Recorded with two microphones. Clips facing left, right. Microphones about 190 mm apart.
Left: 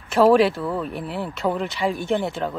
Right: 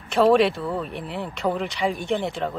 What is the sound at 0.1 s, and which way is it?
Speech, centre (ahead or behind).